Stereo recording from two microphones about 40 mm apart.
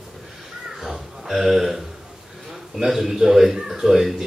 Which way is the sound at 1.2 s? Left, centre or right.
Centre.